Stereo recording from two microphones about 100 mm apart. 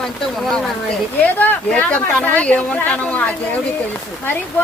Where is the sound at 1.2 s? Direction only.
15° left (ahead or behind).